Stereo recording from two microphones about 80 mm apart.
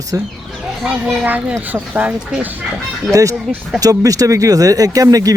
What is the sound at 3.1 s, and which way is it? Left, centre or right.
Speech, right.